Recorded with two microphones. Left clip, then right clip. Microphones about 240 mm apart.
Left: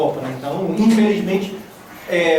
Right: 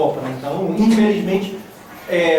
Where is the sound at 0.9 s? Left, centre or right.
Centre.